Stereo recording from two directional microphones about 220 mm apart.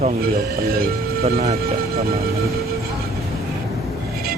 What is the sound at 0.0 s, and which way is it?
Speech, 40° right (ahead or behind).